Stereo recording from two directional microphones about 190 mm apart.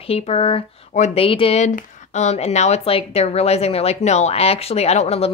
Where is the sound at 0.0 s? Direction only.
30° left (ahead or behind).